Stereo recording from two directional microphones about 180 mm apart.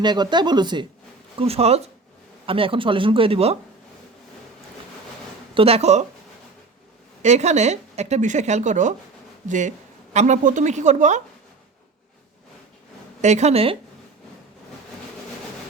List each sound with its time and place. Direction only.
0.0 s speech: 25° right (ahead or behind)
5.5 s speech: 35° right (ahead or behind)
7.2 s a woman's voice: 40° right (ahead or behind)
13.2 s speech: 40° right (ahead or behind)